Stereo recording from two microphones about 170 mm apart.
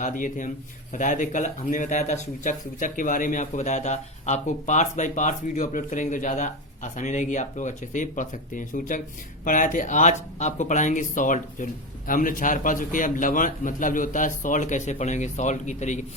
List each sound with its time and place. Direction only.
0.0 s speech: 50° left (ahead or behind)